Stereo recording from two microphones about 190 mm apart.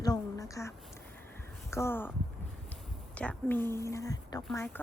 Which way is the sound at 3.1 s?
5° left (ahead or behind).